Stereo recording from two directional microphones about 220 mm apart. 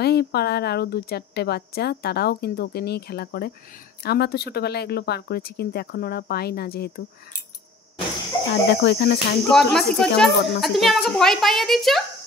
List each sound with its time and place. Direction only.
0.0 s a woman's voice: 45° left (ahead or behind)
8.6 s a woman's voice: 50° left (ahead or behind)
9.5 s speech: centre (ahead or behind)
10.3 s a woman's voice: 50° left (ahead or behind)
10.6 s speech: centre (ahead or behind)